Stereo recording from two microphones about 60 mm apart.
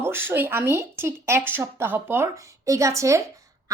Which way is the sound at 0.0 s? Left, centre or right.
Right.